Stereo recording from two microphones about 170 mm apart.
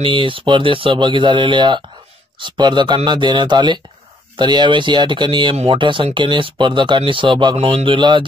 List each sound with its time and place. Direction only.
0.0 s speech: 30° right (ahead or behind)